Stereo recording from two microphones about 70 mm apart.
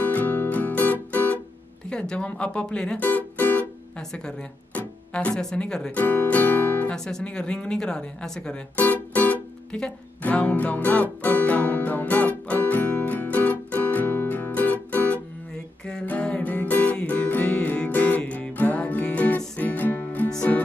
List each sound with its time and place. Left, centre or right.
0.0 s music: left
1.9 s speech: centre
3.0 s music: left
4.1 s speech: centre; by 6.9 s left
6.9 s speech: centre
8.7 s music: left
9.7 s speech: centre
10.2 s music: left
15.5 s music: centre
20.2 s music: centre